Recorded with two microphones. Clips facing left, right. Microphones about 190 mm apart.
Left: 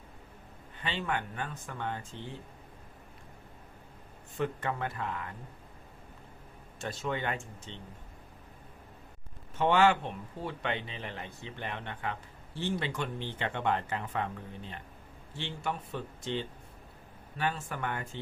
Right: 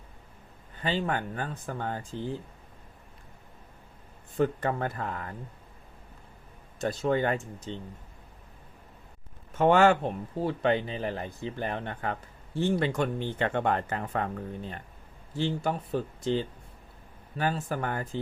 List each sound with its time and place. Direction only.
0.8 s speech: 35° right (ahead or behind)
4.4 s speech: 40° right (ahead or behind)
6.7 s speech: 40° right (ahead or behind)
9.6 s speech: 45° right (ahead or behind)